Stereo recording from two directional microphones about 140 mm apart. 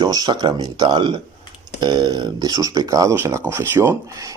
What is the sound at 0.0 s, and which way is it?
Speech, 30° right (ahead or behind).